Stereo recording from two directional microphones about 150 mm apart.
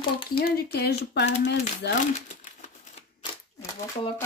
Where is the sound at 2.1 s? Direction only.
50° left (ahead or behind).